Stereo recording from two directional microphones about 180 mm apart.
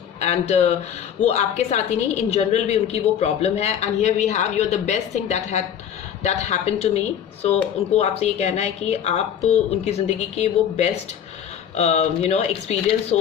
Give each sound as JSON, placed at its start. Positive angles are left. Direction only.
{"t": 0.2, "sound": "a woman's voice", "side_deg": 40}